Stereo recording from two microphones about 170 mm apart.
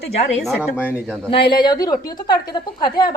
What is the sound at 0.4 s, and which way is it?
Speech, 5° right (ahead or behind).